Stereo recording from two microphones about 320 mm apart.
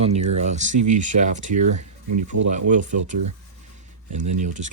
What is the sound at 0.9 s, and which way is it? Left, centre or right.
Speech, right.